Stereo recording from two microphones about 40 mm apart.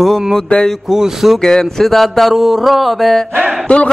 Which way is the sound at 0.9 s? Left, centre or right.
Centre.